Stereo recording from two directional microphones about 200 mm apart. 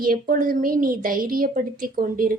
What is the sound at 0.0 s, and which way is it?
A woman's voice, 45° right (ahead or behind).